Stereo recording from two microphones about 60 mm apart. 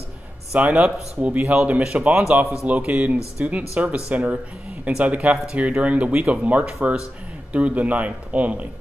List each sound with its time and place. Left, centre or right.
0.6 s speech: right